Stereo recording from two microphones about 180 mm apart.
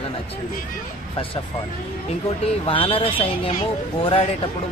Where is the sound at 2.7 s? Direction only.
30° left (ahead or behind).